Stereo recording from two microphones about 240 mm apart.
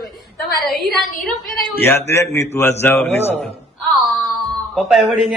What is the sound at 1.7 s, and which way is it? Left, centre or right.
A man's voice, centre.